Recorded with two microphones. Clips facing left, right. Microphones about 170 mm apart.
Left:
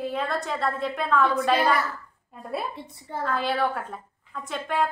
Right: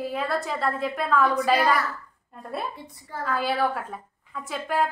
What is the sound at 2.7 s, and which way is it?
Speech, 25° left (ahead or behind).